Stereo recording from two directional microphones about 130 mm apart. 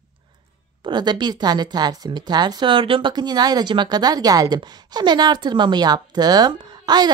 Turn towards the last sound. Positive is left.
turn(degrees=-35)  # may be behind; listen again after turning